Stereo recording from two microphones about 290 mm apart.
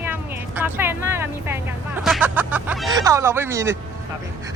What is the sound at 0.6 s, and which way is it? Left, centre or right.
Speech, centre.